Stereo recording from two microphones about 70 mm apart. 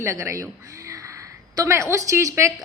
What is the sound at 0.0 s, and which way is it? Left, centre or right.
Speech, right.